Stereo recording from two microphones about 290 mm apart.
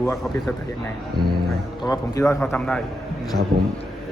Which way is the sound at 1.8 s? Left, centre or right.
Centre.